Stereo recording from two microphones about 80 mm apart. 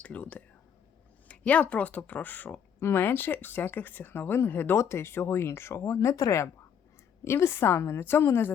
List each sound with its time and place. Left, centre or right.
0.0 s speech: centre
1.3 s a sound: centre
1.7 s speech: centre; by 6.5 s left
7.3 s speech: left